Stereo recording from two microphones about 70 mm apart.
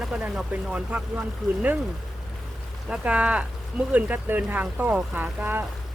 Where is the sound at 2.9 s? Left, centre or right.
Centre.